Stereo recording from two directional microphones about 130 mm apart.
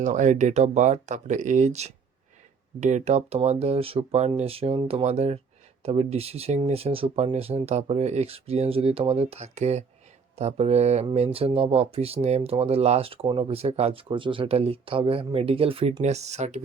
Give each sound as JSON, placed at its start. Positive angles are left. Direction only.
{"t": 0.0, "sound": "speech", "side_deg": -75}